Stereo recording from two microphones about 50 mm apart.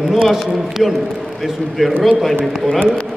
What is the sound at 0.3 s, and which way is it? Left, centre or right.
Speech, centre.